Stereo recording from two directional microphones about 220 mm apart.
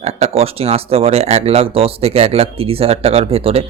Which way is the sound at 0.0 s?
30° right (ahead or behind).